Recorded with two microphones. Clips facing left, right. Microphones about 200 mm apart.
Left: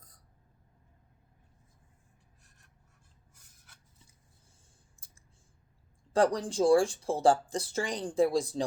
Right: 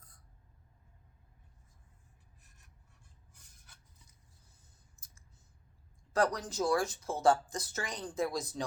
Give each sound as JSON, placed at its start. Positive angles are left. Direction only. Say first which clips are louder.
{"t": 4.9, "sound": "clicking", "louder": "left 1 dB", "side_deg": 30}
{"t": 6.1, "sound": "speech", "louder": "left 5 dB", "side_deg": 30}